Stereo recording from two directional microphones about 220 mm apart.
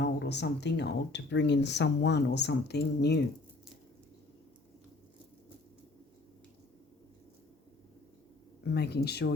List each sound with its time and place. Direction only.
0.0 s speech: 50° left (ahead or behind)
8.6 s speech: 50° left (ahead or behind)